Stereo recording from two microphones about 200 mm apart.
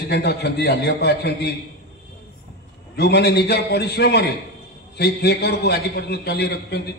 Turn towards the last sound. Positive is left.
turn(degrees=55)  # may be behind; listen again after turning